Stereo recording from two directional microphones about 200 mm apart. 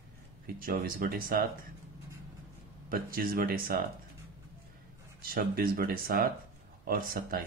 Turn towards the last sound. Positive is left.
turn(degrees=-45)  # may be behind; listen again after turning